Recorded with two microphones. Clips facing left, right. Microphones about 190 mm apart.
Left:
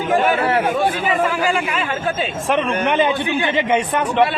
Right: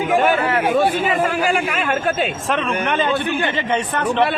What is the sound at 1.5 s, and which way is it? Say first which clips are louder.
Speech: right 1 dB; 55° right (ahead or behind).